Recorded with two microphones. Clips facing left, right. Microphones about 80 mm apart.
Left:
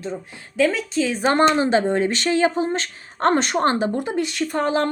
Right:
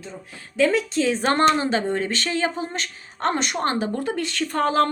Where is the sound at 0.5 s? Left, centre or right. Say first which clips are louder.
Even; centre; by 3.9 s left.